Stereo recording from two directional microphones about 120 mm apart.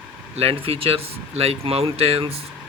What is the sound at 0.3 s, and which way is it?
Speech, 50° right (ahead or behind).